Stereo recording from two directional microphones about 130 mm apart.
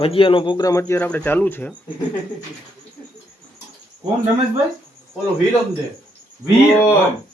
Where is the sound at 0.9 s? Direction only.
10° left (ahead or behind).